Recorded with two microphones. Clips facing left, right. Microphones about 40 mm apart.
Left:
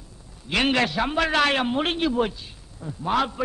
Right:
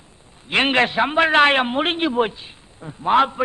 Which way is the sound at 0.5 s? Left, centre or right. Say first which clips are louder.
Right 4 dB; right.